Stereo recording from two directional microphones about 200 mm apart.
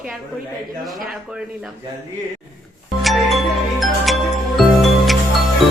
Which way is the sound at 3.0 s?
Centre (ahead or behind).